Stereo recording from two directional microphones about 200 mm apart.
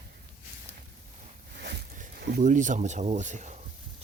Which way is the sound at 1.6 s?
50° right (ahead or behind).